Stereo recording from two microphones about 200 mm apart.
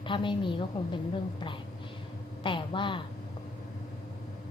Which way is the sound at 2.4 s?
25° left (ahead or behind).